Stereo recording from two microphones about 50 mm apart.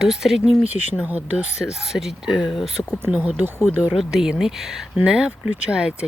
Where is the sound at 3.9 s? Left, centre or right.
Centre.